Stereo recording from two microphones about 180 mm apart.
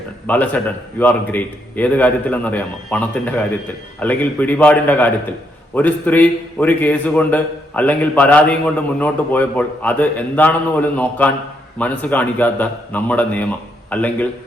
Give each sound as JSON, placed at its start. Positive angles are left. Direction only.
{"t": 0.3, "sound": "a man's voice", "side_deg": 10}